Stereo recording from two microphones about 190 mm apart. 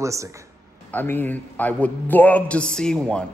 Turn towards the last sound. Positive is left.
turn(degrees=5)  # may be behind; listen again after turning